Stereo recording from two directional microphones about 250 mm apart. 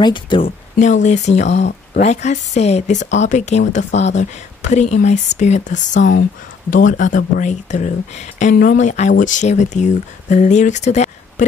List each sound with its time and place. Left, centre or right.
0.0 s speech: centre